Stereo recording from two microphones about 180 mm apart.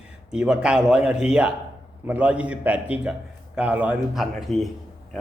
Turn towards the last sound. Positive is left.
turn(degrees=0)  # may be behind; listen again after turning